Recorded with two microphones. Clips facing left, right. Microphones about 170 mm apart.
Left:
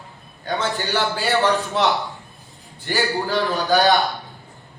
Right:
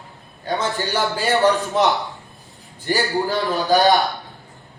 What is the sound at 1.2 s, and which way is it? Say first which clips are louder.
Speech: right 3 dB; 20° right (ahead or behind).